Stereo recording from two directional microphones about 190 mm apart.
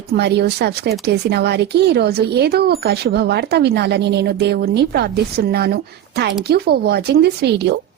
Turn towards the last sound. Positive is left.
turn(degrees=-60)  # may be behind; listen again after turning